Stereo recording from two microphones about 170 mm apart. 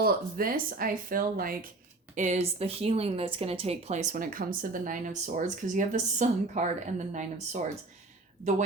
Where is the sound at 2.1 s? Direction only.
45° right (ahead or behind).